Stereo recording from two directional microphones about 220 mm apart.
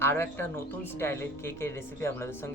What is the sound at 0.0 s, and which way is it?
Speech, 10° left (ahead or behind).